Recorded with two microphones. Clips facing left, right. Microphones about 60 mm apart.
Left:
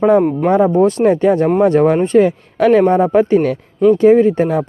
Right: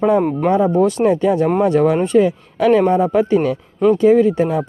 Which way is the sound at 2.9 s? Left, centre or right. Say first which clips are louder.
Left 3 dB; left.